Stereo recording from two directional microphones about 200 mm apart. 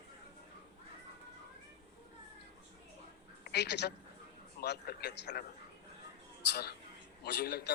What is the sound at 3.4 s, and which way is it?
A woman's voice, 55° left (ahead or behind).